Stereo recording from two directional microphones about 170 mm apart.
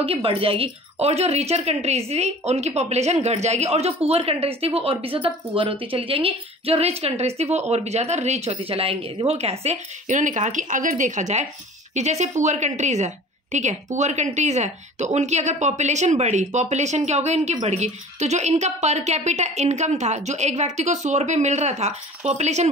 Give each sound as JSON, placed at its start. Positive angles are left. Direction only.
{"t": 0.0, "sound": "a woman's voice", "side_deg": -30}